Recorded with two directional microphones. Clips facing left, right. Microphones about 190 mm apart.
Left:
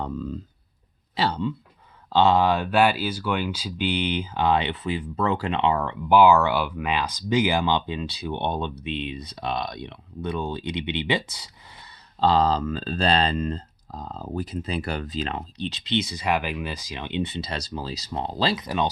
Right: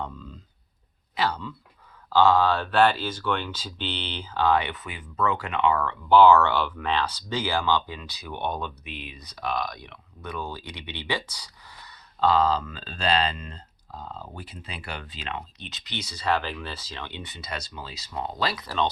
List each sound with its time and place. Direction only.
0.0 s speech: 45° left (ahead or behind)
1.1 s speech: 30° left (ahead or behind)